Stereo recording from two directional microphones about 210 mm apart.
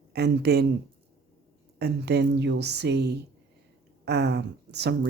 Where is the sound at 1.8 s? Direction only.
50° right (ahead or behind).